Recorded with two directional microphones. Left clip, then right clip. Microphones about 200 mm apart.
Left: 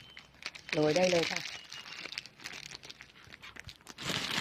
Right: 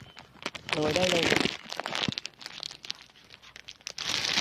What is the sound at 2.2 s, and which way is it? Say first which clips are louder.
Crumpling: right 5 dB; 40° right (ahead or behind).